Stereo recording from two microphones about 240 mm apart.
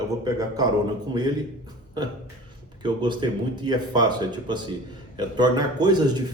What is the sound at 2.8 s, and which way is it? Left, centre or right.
Speech, centre.